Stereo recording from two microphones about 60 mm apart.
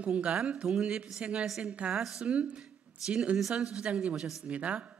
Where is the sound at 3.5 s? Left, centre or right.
Centre.